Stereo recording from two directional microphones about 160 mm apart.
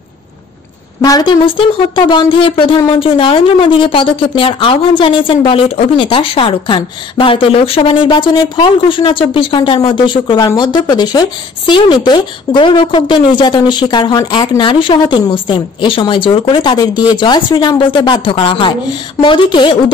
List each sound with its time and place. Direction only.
1.0 s a woman's voice: 25° left (ahead or behind)